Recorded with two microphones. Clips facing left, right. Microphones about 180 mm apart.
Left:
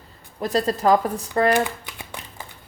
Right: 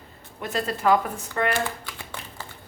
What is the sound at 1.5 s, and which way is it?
Typewriter, 15° left (ahead or behind).